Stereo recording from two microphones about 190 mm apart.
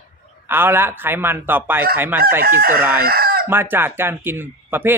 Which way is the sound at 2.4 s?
50° right (ahead or behind).